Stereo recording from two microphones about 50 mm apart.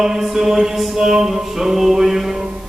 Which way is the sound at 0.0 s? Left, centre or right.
Centre.